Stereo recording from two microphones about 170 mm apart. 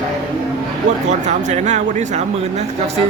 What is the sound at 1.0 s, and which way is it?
Speech, 45° right (ahead or behind).